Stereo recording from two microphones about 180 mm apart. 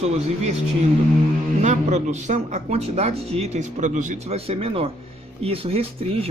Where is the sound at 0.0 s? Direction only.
35° right (ahead or behind).